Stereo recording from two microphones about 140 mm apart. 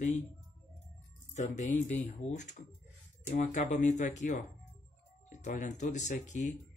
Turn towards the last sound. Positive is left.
turn(degrees=60)  # may be behind; listen again after turning